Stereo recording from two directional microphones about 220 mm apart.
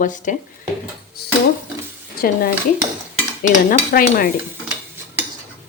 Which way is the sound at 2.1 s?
40° left (ahead or behind).